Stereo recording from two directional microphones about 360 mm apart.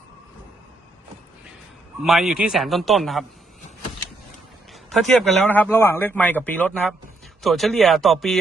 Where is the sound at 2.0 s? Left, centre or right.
Centre.